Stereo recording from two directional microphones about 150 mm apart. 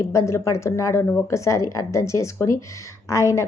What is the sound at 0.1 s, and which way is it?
Speech, 20° left (ahead or behind).